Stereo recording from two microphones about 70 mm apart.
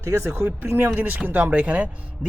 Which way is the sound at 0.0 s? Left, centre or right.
Right.